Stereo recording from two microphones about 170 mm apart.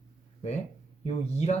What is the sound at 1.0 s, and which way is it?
Speech, 40° left (ahead or behind).